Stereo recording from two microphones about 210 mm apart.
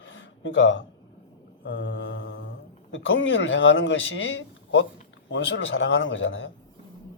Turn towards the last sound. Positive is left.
turn(degrees=65)  # may be behind; listen again after turning